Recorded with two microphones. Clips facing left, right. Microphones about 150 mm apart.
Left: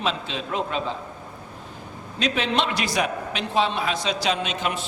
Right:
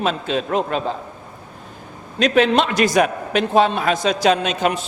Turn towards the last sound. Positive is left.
turn(degrees=-45)  # may be behind; listen again after turning